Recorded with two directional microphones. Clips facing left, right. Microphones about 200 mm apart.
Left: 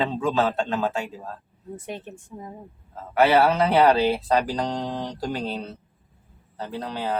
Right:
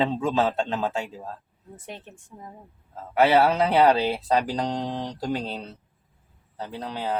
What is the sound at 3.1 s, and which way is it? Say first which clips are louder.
Speech: left 1 dB; 20° right (ahead or behind).